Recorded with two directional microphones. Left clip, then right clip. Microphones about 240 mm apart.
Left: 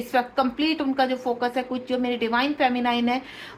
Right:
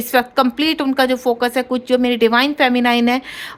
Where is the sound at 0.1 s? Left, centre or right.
Right.